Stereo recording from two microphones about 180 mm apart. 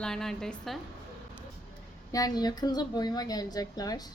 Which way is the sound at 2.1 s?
20° left (ahead or behind).